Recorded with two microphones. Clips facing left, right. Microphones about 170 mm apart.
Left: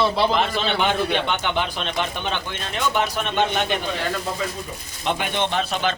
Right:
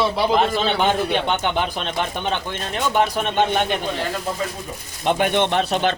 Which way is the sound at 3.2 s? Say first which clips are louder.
Right 3 dB; 50° right (ahead or behind).